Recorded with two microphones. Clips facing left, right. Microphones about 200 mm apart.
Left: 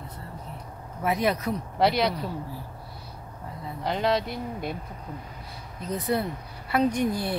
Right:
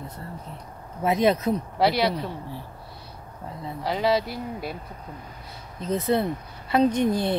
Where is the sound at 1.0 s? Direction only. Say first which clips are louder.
Right 4 dB; 25° right (ahead or behind).